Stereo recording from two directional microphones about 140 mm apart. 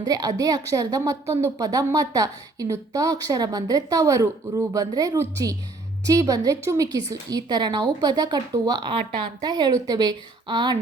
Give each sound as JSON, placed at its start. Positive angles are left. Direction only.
{"t": 0.0, "sound": "a woman's voice", "side_deg": -25}